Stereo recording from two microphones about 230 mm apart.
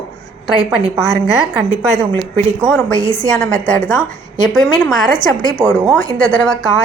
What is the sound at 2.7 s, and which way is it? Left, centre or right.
Speech, centre.